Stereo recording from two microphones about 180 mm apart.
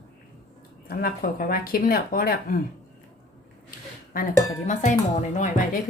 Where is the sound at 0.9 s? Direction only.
55° left (ahead or behind).